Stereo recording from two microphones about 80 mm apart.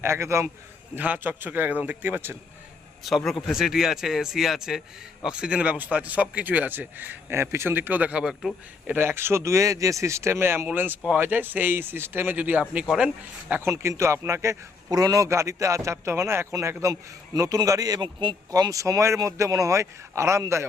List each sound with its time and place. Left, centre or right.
0.0 s a man's voice: right
0.9 s speech: right
3.0 s speech: centre
8.2 s speech: centre
8.9 s a man's voice: right
13.5 s a man's voice: right
14.8 s a man's voice: right
18.0 s speech: right
18.7 s a man's voice: right